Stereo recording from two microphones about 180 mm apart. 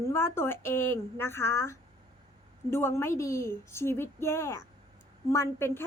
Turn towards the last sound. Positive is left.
turn(degrees=15)  # may be behind; listen again after turning